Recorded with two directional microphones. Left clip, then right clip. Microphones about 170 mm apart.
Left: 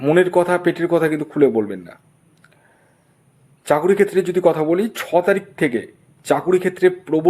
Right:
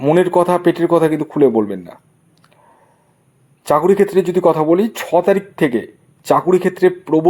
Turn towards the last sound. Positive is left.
turn(degrees=-20)  # may be behind; listen again after turning